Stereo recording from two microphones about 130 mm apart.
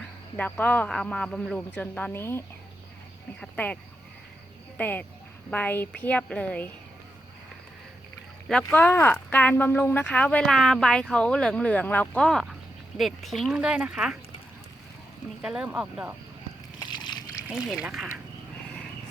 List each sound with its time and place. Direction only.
0.3 s speech: 10° left (ahead or behind)
3.4 s speech: 10° left (ahead or behind)
4.8 s speech: 15° left (ahead or behind)
8.4 s speech: 10° left (ahead or behind)
15.4 s speech: 10° right (ahead or behind)
16.9 s splash: 35° left (ahead or behind)
17.5 s speech: centre (ahead or behind)